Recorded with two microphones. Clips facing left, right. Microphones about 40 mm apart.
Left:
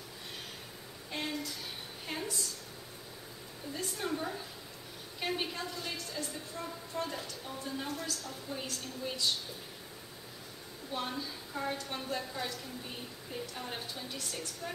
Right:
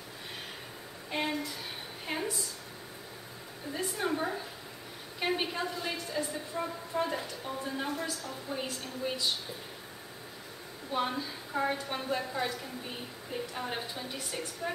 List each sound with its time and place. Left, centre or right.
1.1 s a sound: centre
3.7 s a woman's voice: centre
10.9 s a woman's voice: centre